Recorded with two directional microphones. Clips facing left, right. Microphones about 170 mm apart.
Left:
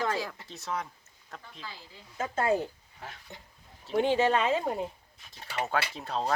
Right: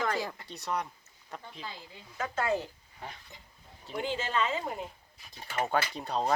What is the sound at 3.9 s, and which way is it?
Speech, 65° left (ahead or behind).